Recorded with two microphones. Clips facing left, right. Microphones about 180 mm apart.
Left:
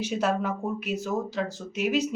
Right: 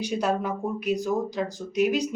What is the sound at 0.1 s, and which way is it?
A woman's voice, 5° left (ahead or behind).